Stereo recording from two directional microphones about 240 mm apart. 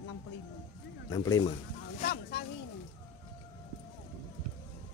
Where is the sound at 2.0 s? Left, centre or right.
Left.